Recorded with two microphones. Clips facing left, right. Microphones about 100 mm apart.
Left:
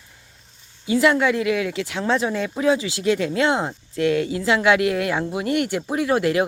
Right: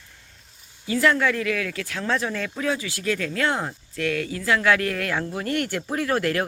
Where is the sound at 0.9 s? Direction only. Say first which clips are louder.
Left 3 dB; 15° left (ahead or behind).